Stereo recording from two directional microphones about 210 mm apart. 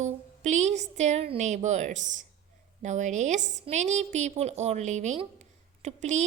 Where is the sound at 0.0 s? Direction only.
35° right (ahead or behind).